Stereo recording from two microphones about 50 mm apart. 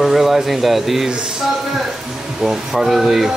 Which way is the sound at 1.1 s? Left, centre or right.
Centre.